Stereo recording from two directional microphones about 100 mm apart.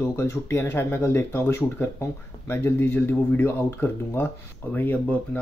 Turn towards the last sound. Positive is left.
turn(degrees=15)  # may be behind; listen again after turning